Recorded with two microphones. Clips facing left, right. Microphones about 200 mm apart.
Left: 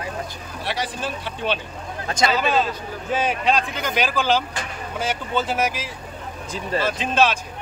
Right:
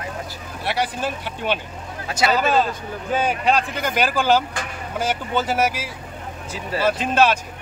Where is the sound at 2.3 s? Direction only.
45° right (ahead or behind).